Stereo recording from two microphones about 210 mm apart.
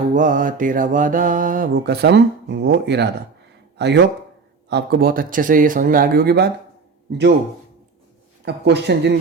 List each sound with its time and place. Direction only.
0.1 s mantra: 40° right (ahead or behind); by 3.1 s 55° right (ahead or behind)
3.8 s speech: 55° right (ahead or behind)
8.4 s speech: 55° right (ahead or behind)